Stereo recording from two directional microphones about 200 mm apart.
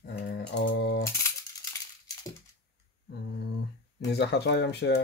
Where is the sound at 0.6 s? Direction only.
60° left (ahead or behind).